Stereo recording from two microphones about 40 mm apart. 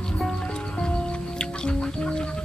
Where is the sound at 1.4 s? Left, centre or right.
Left.